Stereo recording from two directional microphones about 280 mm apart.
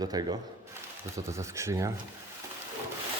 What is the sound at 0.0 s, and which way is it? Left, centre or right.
Speech, centre.